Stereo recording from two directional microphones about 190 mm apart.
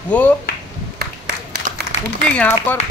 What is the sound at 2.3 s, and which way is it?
Speech, 10° left (ahead or behind).